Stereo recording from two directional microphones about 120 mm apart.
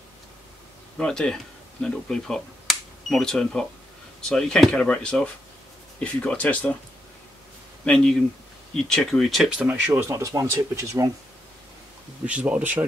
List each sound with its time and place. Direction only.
0.9 s speech: 5° left (ahead or behind)
7.8 s speech: 5° left (ahead or behind); by 11.1 s 25° right (ahead or behind)
12.3 s speech: 10° right (ahead or behind)